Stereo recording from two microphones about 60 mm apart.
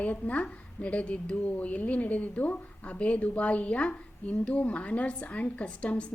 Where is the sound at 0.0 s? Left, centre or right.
Left.